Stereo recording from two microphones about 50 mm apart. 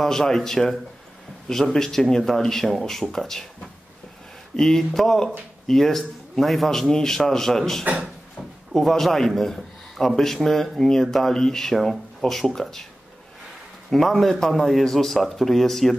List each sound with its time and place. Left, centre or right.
0.0 s a man's voice: centre
4.6 s a man's voice: centre
7.8 s speech: right
8.7 s a man's voice: centre
13.8 s a man's voice: centre